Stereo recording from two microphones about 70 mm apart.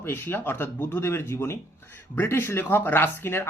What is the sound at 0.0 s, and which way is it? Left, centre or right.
Speech, left.